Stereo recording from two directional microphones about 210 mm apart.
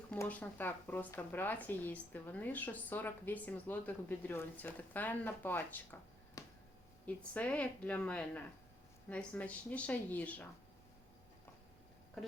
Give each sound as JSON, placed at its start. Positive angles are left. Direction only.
{"t": 0.1, "sound": "speech", "side_deg": 5}